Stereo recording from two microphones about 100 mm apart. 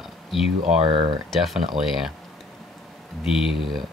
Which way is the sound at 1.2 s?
Centre (ahead or behind).